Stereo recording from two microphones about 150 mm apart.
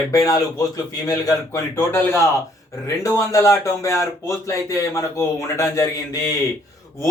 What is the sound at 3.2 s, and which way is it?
Speech, 20° left (ahead or behind).